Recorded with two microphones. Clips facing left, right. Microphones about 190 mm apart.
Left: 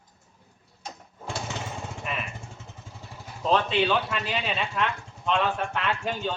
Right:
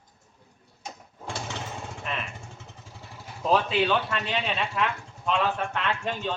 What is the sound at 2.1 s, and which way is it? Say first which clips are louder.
Vehicle: even; 5° left (ahead or behind).